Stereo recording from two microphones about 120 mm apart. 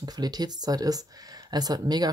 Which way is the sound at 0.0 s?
35° right (ahead or behind).